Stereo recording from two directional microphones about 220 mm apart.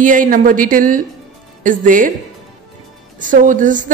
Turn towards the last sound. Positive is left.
turn(degrees=-35)  # may be behind; listen again after turning